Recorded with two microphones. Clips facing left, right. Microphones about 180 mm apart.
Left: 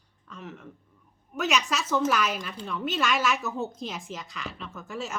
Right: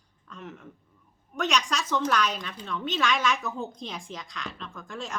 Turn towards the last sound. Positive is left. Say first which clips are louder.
# left 2 dB
turn(degrees=5)  # may be behind; listen again after turning